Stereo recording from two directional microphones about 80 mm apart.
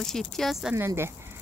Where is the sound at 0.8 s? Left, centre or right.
Right.